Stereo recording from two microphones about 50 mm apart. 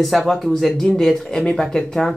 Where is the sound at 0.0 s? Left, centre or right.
Centre.